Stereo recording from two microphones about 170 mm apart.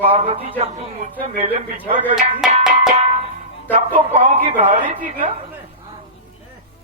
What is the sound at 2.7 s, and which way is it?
Music, 40° right (ahead or behind).